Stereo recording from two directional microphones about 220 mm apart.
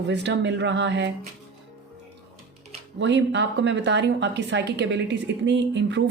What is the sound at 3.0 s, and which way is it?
A woman's voice, 55° right (ahead or behind).